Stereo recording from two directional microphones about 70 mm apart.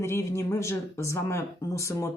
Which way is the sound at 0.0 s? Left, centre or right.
Left.